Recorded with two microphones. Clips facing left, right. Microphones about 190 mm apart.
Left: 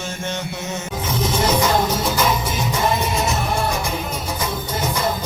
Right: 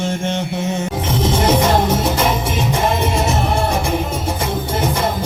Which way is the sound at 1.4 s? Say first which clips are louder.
Right 3 dB; 30° right (ahead or behind).